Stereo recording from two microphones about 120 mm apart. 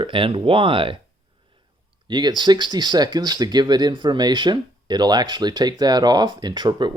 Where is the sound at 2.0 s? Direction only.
40° right (ahead or behind).